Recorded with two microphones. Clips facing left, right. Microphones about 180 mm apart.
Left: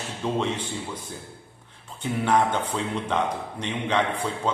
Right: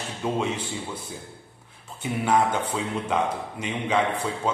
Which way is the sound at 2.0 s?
10° right (ahead or behind).